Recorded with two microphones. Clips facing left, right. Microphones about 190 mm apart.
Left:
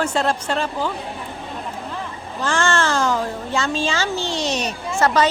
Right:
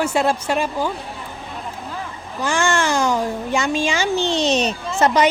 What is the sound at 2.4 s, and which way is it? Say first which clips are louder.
Speech: right 1 dB; 10° right (ahead or behind).